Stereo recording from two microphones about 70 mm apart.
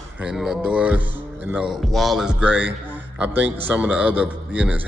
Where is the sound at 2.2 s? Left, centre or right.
Centre.